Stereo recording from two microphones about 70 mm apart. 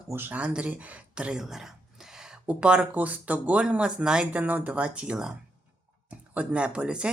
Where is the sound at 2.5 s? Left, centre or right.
Centre.